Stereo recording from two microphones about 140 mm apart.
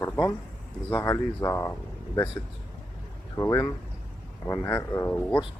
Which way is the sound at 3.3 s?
20° left (ahead or behind).